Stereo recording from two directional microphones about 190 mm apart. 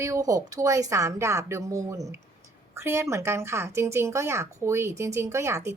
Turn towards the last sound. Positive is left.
turn(degrees=-15)  # may be behind; listen again after turning